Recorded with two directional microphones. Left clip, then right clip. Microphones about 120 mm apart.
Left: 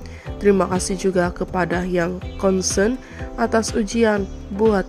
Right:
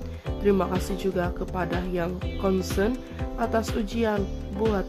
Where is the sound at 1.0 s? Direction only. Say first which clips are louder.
Left 10 dB; 35° left (ahead or behind).